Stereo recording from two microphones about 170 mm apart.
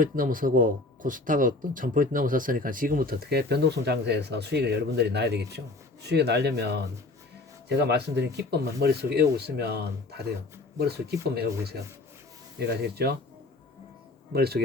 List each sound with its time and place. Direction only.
0.0 s speech: 55° right (ahead or behind); by 13.1 s 75° right (ahead or behind)
14.3 s speech: 70° right (ahead or behind)